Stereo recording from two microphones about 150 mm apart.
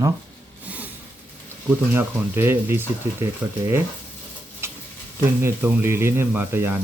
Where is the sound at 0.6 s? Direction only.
10° right (ahead or behind).